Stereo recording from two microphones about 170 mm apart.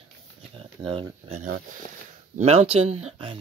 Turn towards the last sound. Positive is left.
turn(degrees=-35)  # may be behind; listen again after turning